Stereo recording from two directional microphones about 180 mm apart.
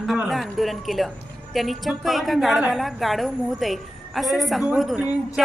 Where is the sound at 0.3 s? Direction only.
Centre (ahead or behind).